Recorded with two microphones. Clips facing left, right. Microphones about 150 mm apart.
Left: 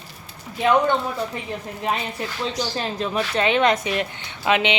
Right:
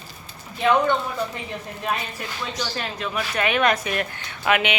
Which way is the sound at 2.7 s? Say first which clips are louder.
Left 4 dB; 30° left (ahead or behind).